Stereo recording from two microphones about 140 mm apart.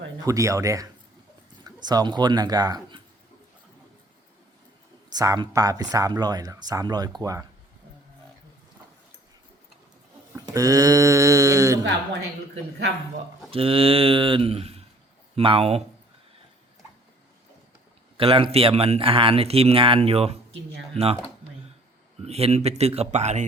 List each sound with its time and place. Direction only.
0.3 s speech: 25° right (ahead or behind)
5.0 s speech: 25° right (ahead or behind)
10.3 s speech: 25° right (ahead or behind)
13.5 s speech: 40° right (ahead or behind)
18.2 s speech: 40° right (ahead or behind)
22.2 s speech: 45° right (ahead or behind)